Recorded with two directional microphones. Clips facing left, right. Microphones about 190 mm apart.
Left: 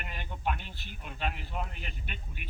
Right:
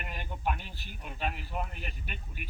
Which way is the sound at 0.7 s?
40° right (ahead or behind).